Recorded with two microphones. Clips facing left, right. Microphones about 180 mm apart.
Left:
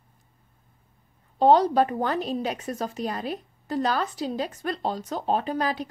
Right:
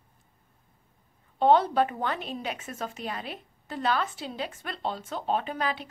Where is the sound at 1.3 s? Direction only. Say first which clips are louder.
Left 3 dB; 35° left (ahead or behind).